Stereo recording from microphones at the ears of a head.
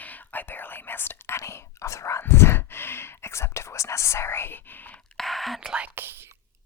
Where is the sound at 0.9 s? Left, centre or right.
Left.